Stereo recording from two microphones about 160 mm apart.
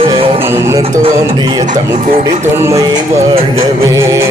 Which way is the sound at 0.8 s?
30° right (ahead or behind).